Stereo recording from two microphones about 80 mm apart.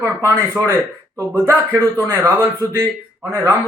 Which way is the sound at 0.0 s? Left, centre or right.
Right.